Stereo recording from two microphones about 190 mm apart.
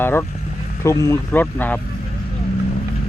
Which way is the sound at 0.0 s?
10° left (ahead or behind).